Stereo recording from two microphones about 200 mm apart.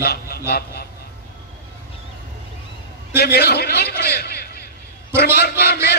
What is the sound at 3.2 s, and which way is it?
A man's voice, 50° left (ahead or behind).